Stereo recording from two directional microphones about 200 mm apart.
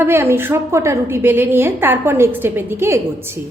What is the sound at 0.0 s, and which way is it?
A woman's voice, 10° right (ahead or behind).